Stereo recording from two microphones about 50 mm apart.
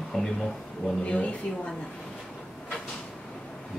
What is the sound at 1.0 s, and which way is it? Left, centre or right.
Speech, left.